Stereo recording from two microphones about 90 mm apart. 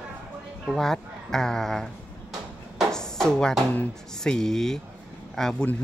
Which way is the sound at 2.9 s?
5° left (ahead or behind).